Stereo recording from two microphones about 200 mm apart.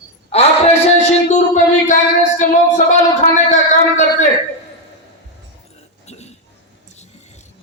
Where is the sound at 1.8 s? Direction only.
40° left (ahead or behind).